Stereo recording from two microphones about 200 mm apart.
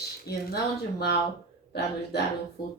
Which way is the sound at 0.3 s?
55° left (ahead or behind).